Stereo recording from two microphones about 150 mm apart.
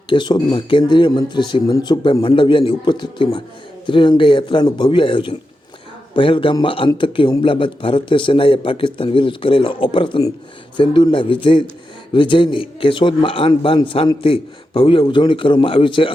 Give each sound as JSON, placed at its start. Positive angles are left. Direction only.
{"t": 0.1, "sound": "speech", "side_deg": 30}